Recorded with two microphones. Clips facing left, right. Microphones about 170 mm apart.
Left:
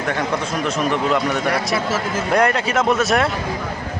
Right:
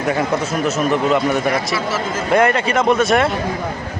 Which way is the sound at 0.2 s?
5° right (ahead or behind).